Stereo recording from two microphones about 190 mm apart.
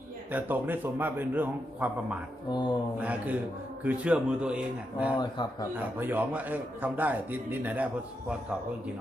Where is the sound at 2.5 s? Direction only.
25° left (ahead or behind).